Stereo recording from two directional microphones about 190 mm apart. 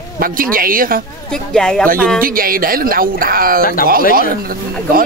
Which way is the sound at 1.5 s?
5° left (ahead or behind).